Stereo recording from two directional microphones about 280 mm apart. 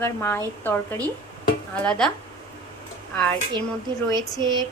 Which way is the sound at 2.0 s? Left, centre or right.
Centre.